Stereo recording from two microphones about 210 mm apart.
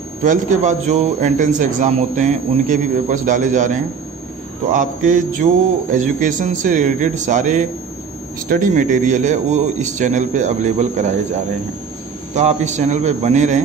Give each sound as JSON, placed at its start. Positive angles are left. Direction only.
{"t": 0.2, "sound": "a man's voice", "side_deg": -35}
{"t": 4.7, "sound": "a man's voice", "side_deg": -35}
{"t": 12.4, "sound": "a man's voice", "side_deg": -35}